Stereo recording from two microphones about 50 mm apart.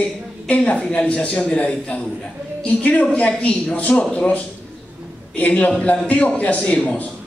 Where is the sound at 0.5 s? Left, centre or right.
Left.